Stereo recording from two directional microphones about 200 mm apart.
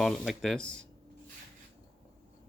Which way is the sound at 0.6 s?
65° right (ahead or behind).